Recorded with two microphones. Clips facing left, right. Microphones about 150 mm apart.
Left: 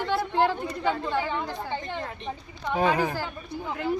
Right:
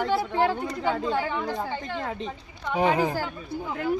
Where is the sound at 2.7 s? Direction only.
20° right (ahead or behind).